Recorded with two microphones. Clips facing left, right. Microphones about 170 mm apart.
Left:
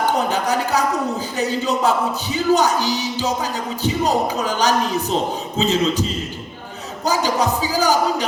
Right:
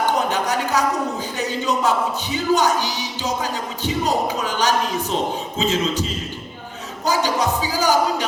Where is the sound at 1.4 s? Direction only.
35° left (ahead or behind).